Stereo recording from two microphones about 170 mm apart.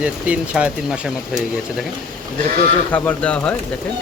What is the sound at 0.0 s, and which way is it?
Speech, 5° right (ahead or behind).